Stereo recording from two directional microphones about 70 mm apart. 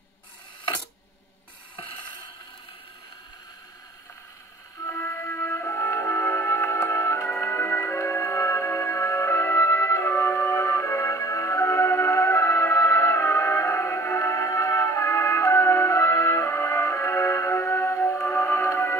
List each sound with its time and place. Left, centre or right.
4.8 s music: left